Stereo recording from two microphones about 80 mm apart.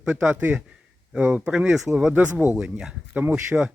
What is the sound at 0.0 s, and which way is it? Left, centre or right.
A man's voice, centre.